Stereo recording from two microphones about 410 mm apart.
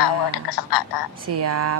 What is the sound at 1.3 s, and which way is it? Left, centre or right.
Speech, right.